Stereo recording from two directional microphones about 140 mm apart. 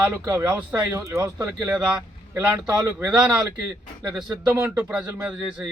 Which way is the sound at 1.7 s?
5° right (ahead or behind).